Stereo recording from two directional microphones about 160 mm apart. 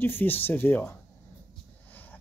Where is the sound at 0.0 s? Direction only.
15° left (ahead or behind).